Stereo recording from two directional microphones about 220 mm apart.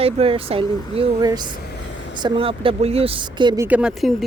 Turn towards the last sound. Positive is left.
turn(degrees=0)  # may be behind; listen again after turning